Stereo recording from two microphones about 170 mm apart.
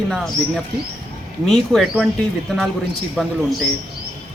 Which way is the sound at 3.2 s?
Centre (ahead or behind).